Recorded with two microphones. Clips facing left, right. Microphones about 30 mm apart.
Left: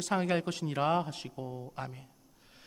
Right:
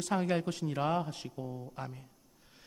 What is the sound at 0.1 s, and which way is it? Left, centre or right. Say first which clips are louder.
A man's voice: left 1 dB; centre.